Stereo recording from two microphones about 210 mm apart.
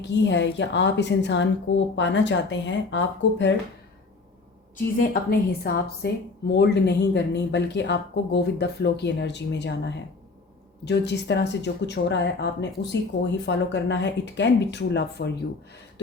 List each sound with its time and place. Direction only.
0.0 s speech: 55° left (ahead or behind)
4.9 s a woman's voice: 50° left (ahead or behind)